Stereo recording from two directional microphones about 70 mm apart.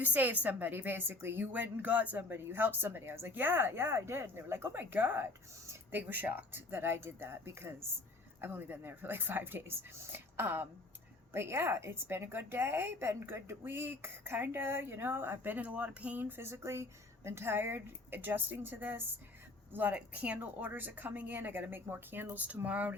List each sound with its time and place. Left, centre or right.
0.0 s a woman's voice: right